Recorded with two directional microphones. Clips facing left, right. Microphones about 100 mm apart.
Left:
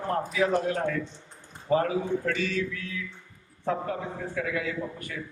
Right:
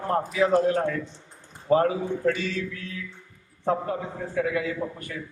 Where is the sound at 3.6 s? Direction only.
35° right (ahead or behind).